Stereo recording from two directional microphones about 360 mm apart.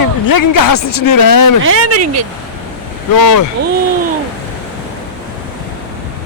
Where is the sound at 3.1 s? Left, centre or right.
Left.